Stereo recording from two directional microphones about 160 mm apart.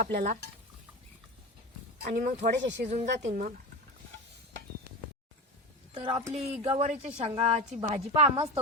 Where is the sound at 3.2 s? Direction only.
50° right (ahead or behind).